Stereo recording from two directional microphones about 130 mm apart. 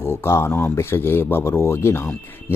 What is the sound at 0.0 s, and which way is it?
Speech, 20° left (ahead or behind).